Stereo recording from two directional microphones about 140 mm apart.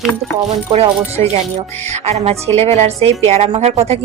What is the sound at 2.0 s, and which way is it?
Speech, 50° right (ahead or behind).